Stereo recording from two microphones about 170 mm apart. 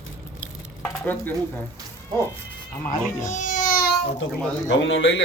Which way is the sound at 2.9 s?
50° left (ahead or behind).